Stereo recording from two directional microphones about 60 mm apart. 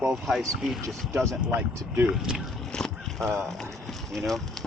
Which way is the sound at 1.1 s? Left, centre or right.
Right.